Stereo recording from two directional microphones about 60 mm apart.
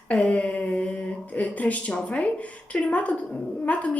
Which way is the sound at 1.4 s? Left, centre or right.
Left.